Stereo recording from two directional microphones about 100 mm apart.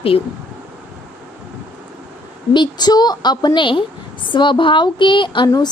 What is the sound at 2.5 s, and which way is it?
Speech, 45° left (ahead or behind).